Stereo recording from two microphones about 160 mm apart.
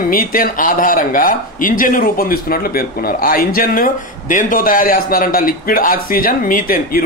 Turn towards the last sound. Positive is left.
turn(degrees=65)  # may be behind; listen again after turning